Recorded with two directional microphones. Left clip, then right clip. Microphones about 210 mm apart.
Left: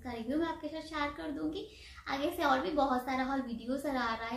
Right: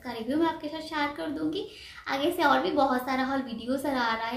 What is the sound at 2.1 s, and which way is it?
A woman's voice, 5° right (ahead or behind).